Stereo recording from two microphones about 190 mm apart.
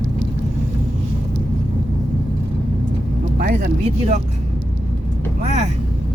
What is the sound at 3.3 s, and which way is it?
Vehicle, 50° right (ahead or behind).